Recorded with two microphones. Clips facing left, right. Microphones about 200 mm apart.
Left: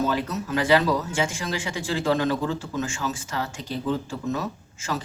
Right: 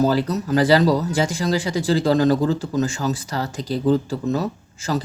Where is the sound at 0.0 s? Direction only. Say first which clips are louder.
Right 6 dB; 35° right (ahead or behind).